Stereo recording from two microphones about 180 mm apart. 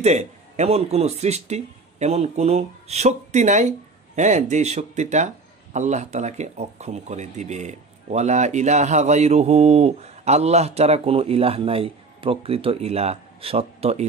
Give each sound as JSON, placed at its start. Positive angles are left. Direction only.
{"t": 0.0, "sound": "speech", "side_deg": -40}